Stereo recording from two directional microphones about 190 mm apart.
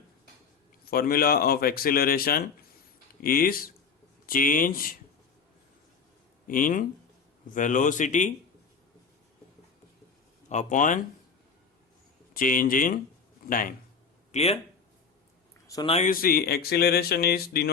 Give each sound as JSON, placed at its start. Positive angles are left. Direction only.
{"t": 0.9, "sound": "speech", "side_deg": 50}
{"t": 6.5, "sound": "speech", "side_deg": 45}
{"t": 10.5, "sound": "speech", "side_deg": 40}
{"t": 12.3, "sound": "speech", "side_deg": 45}
{"t": 14.3, "sound": "speech", "side_deg": 35}
{"t": 15.6, "sound": "a sound", "side_deg": 20}
{"t": 16.0, "sound": "speech", "side_deg": 50}